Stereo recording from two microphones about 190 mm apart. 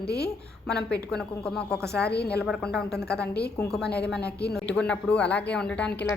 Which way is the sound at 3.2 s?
60° left (ahead or behind).